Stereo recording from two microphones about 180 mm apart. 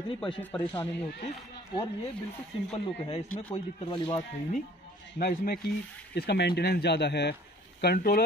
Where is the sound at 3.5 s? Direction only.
35° left (ahead or behind).